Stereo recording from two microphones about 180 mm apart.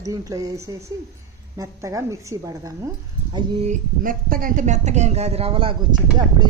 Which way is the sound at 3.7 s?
50° right (ahead or behind).